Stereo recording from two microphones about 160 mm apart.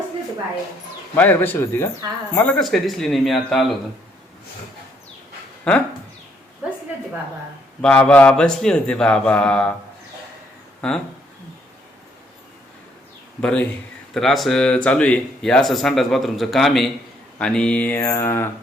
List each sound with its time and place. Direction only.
1.1 s speech: 10° left (ahead or behind)
5.7 s speech: 10° left (ahead or behind)
7.8 s speech: 5° left (ahead or behind)
10.8 s speech: 5° left (ahead or behind)
13.4 s speech: 5° left (ahead or behind)